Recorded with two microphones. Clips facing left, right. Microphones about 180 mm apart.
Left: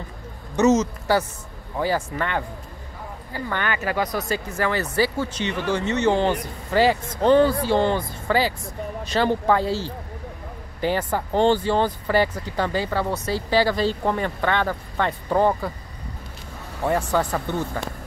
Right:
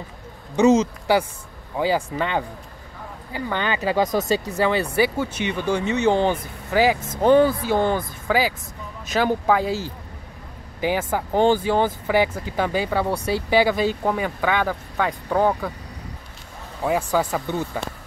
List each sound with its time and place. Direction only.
0.6 s speech: 10° right (ahead or behind)
10.8 s speech: 10° right (ahead or behind)
16.8 s speech: 5° right (ahead or behind)